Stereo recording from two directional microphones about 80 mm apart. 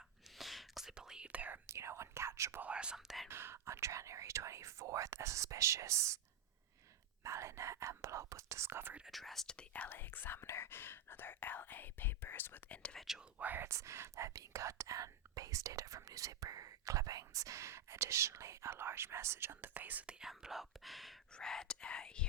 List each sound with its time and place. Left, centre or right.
0.3 s whispering: centre
1.6 s whispering: right
2.6 s whispering: centre
3.2 s whispering: right
7.3 s speech: right
9.0 s speech: centre
13.0 s speech: centre
13.4 s speech: right
13.7 s speech: right; by 22.3 s centre